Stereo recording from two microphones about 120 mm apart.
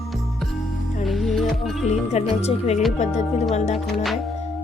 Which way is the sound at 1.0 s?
Centre (ahead or behind).